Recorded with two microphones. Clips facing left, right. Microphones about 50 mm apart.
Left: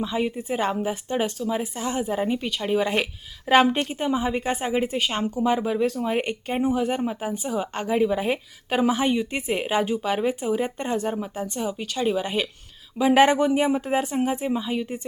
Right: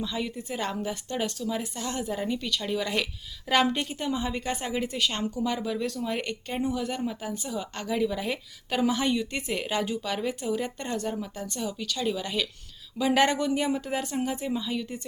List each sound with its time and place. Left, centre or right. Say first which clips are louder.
0.0 s speech: left 6 dB; left